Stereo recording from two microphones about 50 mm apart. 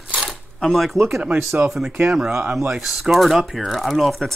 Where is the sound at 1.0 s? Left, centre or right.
Centre.